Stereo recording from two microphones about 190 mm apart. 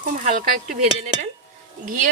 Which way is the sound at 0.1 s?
45° right (ahead or behind).